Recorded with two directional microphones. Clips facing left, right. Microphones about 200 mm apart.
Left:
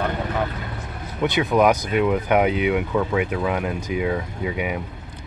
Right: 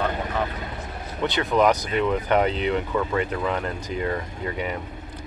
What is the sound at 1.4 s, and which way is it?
Speech, 5° left (ahead or behind).